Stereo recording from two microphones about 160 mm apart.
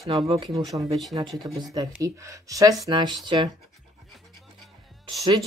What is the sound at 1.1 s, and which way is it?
Speech, 25° right (ahead or behind).